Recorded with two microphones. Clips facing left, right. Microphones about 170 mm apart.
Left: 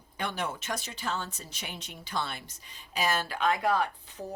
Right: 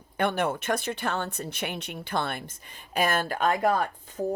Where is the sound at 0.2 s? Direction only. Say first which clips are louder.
Right 8 dB; 55° right (ahead or behind).